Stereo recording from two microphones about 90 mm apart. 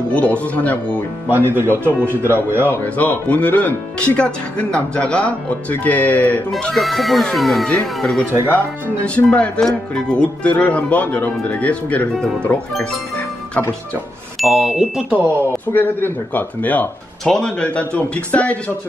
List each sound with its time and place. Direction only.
0.1 s speech: 15° left (ahead or behind)
1.3 s speech: 25° right (ahead or behind)
2.7 s speech: 20° left (ahead or behind)
6.7 s speech: centre (ahead or behind)
9.0 s speech: 15° left (ahead or behind)
12.1 s speech: 5° left (ahead or behind)
14.4 s speech: centre (ahead or behind)
15.1 s speech: 20° left (ahead or behind)
17.2 s speech: 5° left (ahead or behind)